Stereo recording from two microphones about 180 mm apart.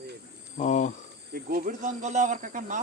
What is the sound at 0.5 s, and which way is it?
Speech, 40° left (ahead or behind).